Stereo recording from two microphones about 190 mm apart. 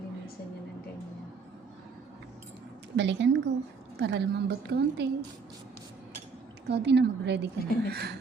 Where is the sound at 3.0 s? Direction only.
65° right (ahead or behind).